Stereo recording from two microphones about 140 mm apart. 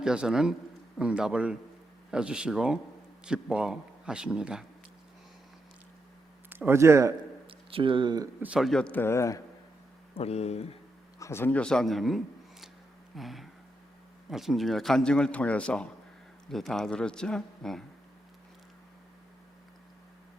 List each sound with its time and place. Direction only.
0.0 s a man's voice: 5° right (ahead or behind)
6.5 s speech: 15° right (ahead or behind)
7.4 s speech: 40° right (ahead or behind)
8.4 s speech: 5° right (ahead or behind); by 9.4 s 20° left (ahead or behind)
10.2 s speech: 50° left (ahead or behind)
11.2 s a man's voice: 20° left (ahead or behind)